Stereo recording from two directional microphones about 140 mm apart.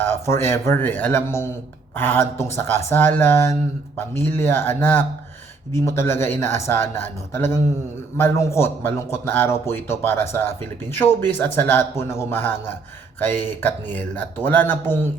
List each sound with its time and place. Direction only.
0.0 s speech: 15° left (ahead or behind)